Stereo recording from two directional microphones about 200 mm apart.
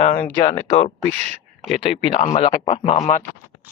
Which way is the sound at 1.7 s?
30° left (ahead or behind).